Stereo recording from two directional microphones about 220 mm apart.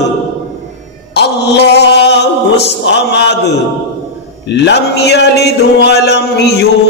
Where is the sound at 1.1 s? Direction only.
50° left (ahead or behind).